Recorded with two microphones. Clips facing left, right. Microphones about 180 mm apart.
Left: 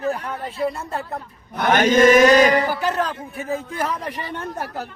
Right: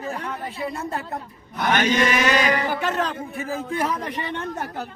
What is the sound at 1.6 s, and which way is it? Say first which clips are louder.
Chant: left 5 dB; 50° left (ahead or behind).